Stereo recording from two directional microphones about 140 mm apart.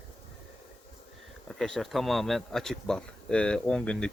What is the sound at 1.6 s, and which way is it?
Speech, centre (ahead or behind).